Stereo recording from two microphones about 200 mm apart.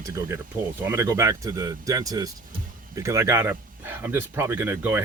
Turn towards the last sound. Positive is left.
turn(degrees=-10)  # may be behind; listen again after turning